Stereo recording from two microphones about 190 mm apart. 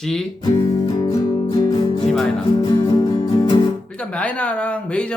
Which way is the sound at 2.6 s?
20° left (ahead or behind).